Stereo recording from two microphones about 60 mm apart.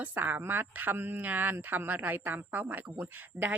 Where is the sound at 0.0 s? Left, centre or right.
Right.